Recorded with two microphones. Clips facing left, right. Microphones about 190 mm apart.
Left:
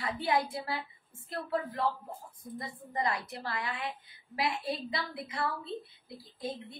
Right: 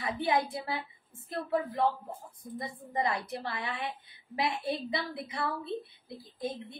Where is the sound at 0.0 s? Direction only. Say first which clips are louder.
Right 1 dB; 20° right (ahead or behind).